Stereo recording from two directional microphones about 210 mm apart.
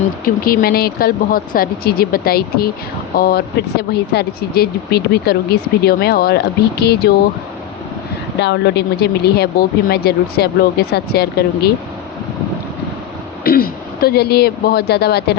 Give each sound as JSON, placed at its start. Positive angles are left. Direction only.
{"t": 0.4, "sound": "speech", "side_deg": 45}
{"t": 8.4, "sound": "speech", "side_deg": 55}
{"t": 13.4, "sound": "speech", "side_deg": 45}